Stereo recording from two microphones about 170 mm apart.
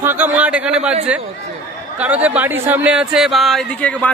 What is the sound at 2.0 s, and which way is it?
Speech, 10° right (ahead or behind).